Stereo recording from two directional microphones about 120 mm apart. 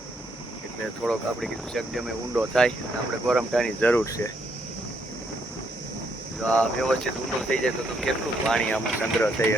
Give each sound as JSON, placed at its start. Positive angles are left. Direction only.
{"t": 1.0, "sound": "speech", "side_deg": 0}
{"t": 2.3, "sound": "speech", "side_deg": -10}
{"t": 3.2, "sound": "speech", "side_deg": 0}
{"t": 3.8, "sound": "speech", "side_deg": 15}
{"t": 4.0, "sound": "speech", "side_deg": 25}
{"t": 6.5, "sound": "speech", "side_deg": 5}
{"t": 9.0, "sound": "speech", "side_deg": 20}